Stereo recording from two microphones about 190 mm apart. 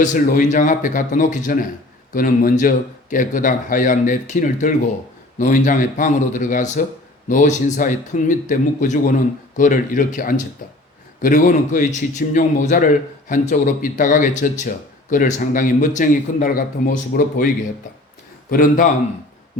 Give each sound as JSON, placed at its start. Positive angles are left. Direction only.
{"t": 0.0, "sound": "a man's voice", "side_deg": 40}
{"t": 18.5, "sound": "speech", "side_deg": 45}